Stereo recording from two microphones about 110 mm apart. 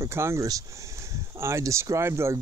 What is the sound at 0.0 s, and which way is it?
Speech, 25° right (ahead or behind).